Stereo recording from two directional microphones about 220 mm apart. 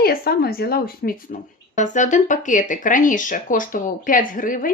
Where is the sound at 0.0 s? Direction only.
45° left (ahead or behind).